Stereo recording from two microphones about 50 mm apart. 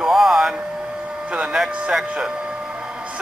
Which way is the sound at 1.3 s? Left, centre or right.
Right.